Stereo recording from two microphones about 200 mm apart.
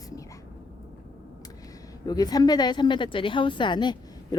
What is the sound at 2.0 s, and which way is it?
A woman's voice, 20° left (ahead or behind).